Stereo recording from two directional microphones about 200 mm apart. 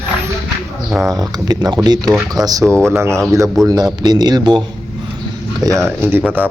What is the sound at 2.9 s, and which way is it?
A man's voice, 15° right (ahead or behind).